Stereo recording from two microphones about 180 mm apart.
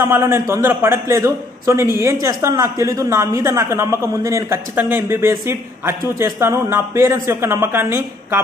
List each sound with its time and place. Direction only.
0.0 s a man's voice: 15° right (ahead or behind)